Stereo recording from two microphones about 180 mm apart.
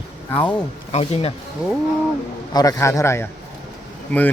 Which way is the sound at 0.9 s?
35° left (ahead or behind).